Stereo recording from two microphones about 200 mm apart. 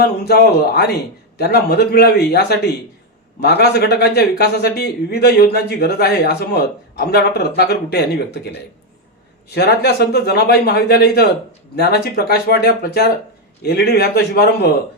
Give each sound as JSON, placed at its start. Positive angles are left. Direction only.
{"t": 0.3, "sound": "a man's voice", "side_deg": 50}
{"t": 9.6, "sound": "a man's voice", "side_deg": 55}